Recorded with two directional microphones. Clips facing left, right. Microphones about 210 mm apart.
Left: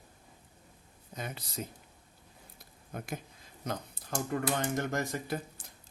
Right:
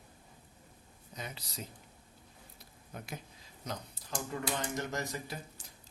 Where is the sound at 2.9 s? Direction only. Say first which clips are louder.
Left 5 dB; 50° left (ahead or behind).